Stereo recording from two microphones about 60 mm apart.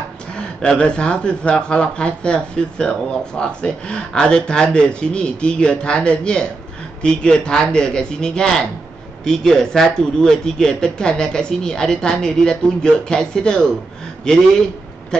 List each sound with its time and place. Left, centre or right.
0.4 s speech: centre